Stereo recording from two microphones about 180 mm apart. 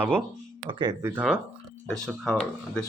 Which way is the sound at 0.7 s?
25° right (ahead or behind).